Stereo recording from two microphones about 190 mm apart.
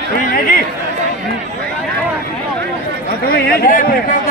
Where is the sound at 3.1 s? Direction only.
50° left (ahead or behind).